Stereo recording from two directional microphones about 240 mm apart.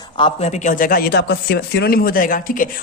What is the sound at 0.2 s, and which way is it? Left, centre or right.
Speech, left.